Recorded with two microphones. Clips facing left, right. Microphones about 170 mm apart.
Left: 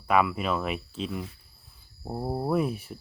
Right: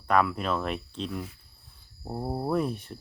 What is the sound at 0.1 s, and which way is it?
Speech, 5° left (ahead or behind).